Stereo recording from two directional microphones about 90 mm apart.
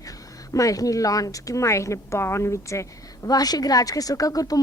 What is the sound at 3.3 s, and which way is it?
Speech, 45° left (ahead or behind).